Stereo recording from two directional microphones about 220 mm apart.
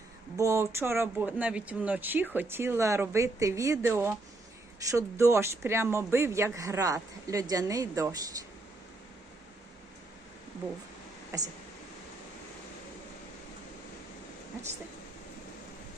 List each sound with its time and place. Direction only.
0.3 s speech: 15° right (ahead or behind)
11.3 s speech: 15° right (ahead or behind)